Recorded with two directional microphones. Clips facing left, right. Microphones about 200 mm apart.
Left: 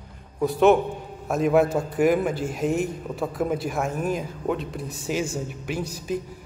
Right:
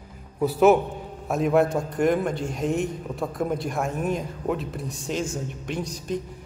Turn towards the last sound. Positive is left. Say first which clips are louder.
# left 1 dB
turn(degrees=5)  # may be behind; listen again after turning